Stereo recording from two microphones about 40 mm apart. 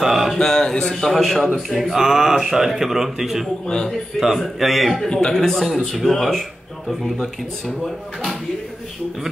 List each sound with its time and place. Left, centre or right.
0.0 s a sound: centre
0.3 s a man's voice: centre
1.8 s a man's voice: centre
3.6 s a man's voice: left
4.4 s a man's voice: centre